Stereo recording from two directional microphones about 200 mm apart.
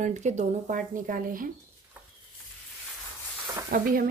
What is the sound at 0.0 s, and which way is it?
Speech, 35° right (ahead or behind).